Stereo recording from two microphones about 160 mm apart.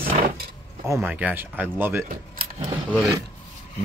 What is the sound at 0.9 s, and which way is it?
Speech, 10° right (ahead or behind).